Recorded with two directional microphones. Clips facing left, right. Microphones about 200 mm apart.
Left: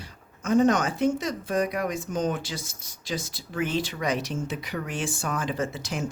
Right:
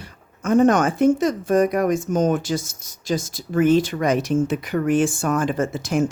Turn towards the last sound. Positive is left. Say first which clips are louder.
# right 9 dB
turn(degrees=-50)  # may be behind; listen again after turning